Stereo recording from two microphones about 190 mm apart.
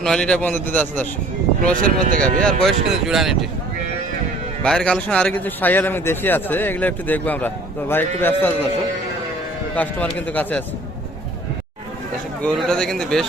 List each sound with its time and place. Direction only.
0.0 s a man's voice: 5° left (ahead or behind)
1.7 s speech: 45° right (ahead or behind)
2.2 s speech: 5° left (ahead or behind)
4.6 s a man's voice: 5° left (ahead or behind)
9.7 s a man's voice: 10° left (ahead or behind)
12.4 s speech: 5° left (ahead or behind)